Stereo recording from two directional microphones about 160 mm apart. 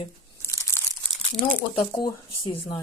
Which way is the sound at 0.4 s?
20° left (ahead or behind).